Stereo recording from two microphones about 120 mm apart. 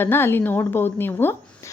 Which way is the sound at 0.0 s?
20° left (ahead or behind).